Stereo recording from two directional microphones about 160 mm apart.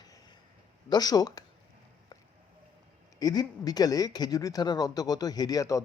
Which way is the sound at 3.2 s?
25° left (ahead or behind).